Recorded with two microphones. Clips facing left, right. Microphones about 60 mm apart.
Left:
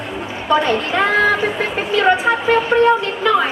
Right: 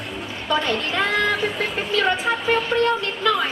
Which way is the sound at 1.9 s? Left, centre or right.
Centre.